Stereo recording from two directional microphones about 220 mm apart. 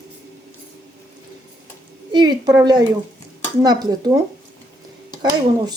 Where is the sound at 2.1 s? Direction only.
20° right (ahead or behind).